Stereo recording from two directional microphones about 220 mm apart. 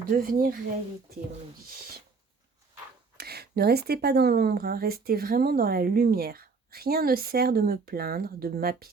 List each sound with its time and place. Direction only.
0.1 s speech: 40° right (ahead or behind)
3.2 s speech: 45° right (ahead or behind)